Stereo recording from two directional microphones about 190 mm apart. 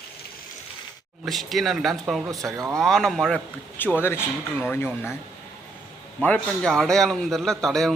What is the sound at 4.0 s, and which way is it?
Speech, 10° left (ahead or behind).